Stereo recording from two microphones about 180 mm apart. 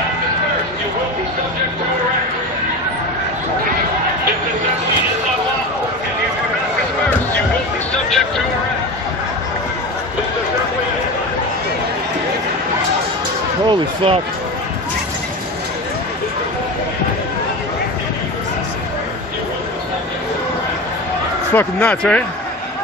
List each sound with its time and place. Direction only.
13.7 s speech: 30° right (ahead or behind)
21.5 s speech: 5° left (ahead or behind)